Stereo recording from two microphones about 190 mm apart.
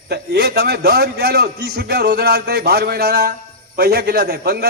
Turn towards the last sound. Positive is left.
turn(degrees=-55)  # may be behind; listen again after turning